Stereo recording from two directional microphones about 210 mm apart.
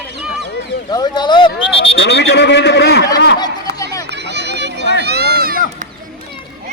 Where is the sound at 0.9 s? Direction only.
20° left (ahead or behind).